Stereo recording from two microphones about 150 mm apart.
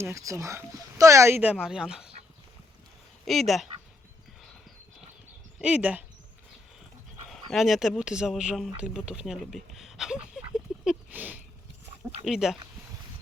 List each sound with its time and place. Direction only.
0.0 s speech: 20° right (ahead or behind); by 2.1 s 5° right (ahead or behind)
3.2 s speech: centre (ahead or behind)
5.5 s speech: 5° right (ahead or behind)
7.3 s speech: centre (ahead or behind)